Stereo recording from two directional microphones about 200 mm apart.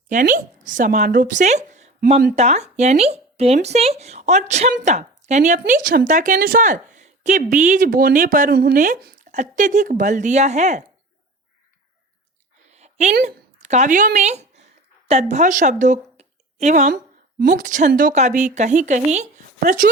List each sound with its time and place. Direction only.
0.1 s a woman's voice: 40° right (ahead or behind)
12.7 s a sound: 35° right (ahead or behind)
13.2 s a woman's voice: 35° right (ahead or behind)